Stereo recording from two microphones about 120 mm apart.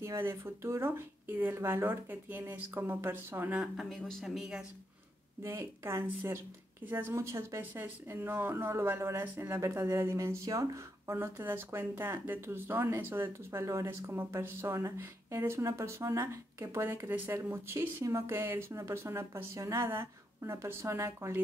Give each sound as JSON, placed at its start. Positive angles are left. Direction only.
{"t": 0.0, "sound": "speech", "side_deg": -20}
{"t": 3.7, "sound": "speech", "side_deg": 5}
{"t": 5.4, "sound": "speech", "side_deg": -20}